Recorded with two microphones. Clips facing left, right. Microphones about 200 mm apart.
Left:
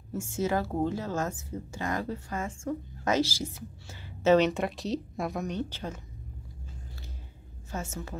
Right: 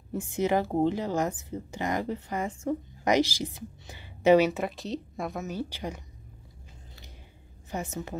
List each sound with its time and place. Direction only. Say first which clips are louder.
0.1 s speech: right 3 dB; 15° right (ahead or behind)
4.4 s speech: right 1 dB; 5° right (ahead or behind)
7.7 s speech: right 3 dB; 15° right (ahead or behind)